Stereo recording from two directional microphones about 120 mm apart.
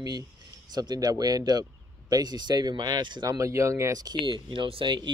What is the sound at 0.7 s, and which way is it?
Speech, 35° right (ahead or behind).